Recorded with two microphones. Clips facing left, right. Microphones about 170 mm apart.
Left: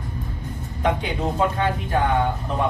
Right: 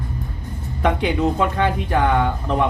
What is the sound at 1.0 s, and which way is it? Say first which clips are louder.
Speech: right 4 dB; 70° right (ahead or behind).